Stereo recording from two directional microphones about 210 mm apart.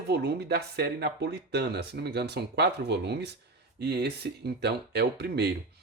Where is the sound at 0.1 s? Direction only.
50° right (ahead or behind).